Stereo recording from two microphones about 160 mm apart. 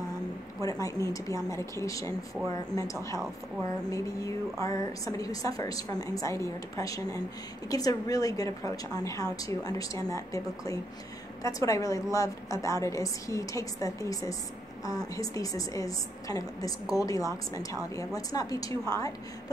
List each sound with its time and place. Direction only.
0.6 s a woman's voice: 20° left (ahead or behind)